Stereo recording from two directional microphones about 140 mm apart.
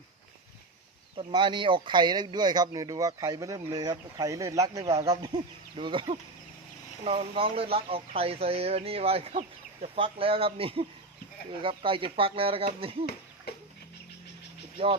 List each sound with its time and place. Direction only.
1.1 s speech: 35° right (ahead or behind)
14.8 s speech: 40° right (ahead or behind)